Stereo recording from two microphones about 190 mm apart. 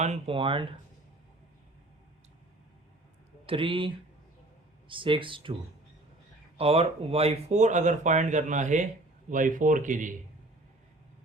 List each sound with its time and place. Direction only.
0.0 s speech: 30° right (ahead or behind)
3.4 s speech: 25° right (ahead or behind)
6.6 s speech: 30° right (ahead or behind)